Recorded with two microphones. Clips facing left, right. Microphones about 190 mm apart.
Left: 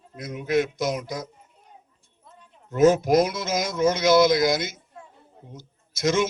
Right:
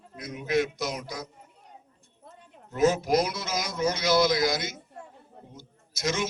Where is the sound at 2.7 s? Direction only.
50° left (ahead or behind).